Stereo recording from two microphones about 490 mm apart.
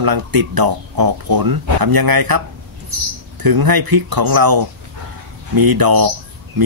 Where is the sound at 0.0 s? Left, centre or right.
Right.